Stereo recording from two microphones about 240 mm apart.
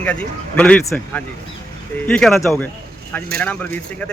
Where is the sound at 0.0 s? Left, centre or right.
Centre.